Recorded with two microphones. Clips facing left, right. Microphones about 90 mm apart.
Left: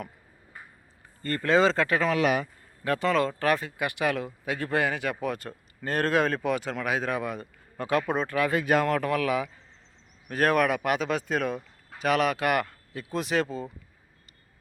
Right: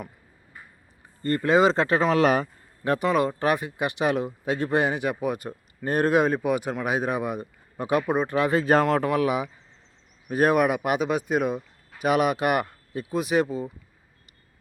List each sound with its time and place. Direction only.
1.2 s speech: 20° right (ahead or behind); by 2.5 s 35° right (ahead or behind)
2.8 s speech: 20° right (ahead or behind)
8.3 s speech: 25° right (ahead or behind)
13.1 s speech: 10° right (ahead or behind)